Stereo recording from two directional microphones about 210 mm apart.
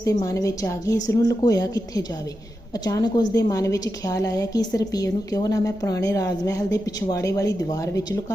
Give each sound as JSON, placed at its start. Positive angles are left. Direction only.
{"t": 0.0, "sound": "a woman's voice", "side_deg": 15}